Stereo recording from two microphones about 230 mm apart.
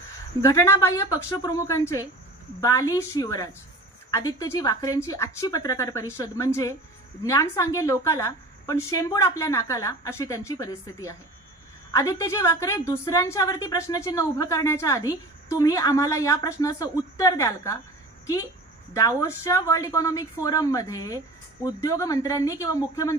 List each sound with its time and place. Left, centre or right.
0.4 s a woman's voice: centre